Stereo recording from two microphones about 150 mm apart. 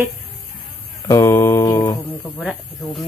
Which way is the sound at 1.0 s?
20° left (ahead or behind).